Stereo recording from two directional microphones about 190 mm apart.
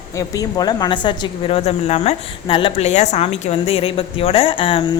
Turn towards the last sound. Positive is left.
turn(degrees=30)  # may be behind; listen again after turning